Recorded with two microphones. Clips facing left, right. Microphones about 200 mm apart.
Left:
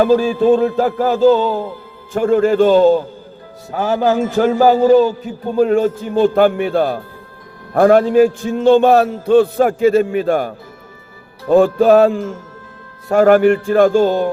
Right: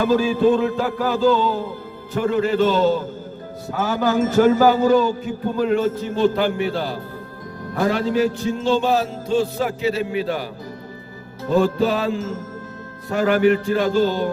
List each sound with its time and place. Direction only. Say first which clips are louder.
0.0 s music: left 4 dB; 45° left (ahead or behind)